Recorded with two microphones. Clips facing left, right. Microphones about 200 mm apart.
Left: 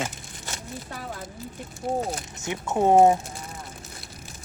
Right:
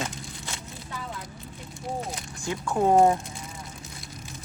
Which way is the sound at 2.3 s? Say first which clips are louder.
Even; 20° left (ahead or behind).